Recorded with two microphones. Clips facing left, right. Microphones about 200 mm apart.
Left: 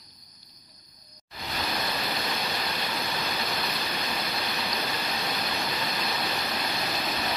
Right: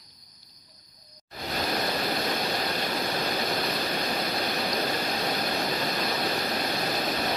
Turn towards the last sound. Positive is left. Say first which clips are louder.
# right 3 dB
turn(degrees=-45)  # may be behind; listen again after turning